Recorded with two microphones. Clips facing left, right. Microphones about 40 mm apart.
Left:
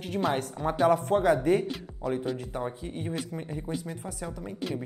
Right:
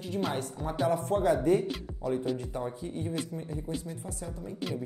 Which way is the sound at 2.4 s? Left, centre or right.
Left.